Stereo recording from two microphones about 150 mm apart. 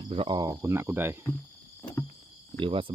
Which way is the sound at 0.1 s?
35° right (ahead or behind).